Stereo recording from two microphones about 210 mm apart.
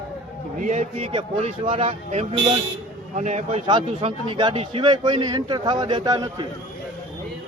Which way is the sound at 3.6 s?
25° right (ahead or behind).